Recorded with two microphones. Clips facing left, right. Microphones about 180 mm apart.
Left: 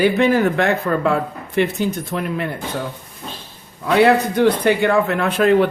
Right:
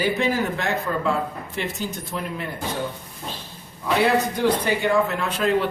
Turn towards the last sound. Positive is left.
turn(degrees=60)  # may be behind; listen again after turning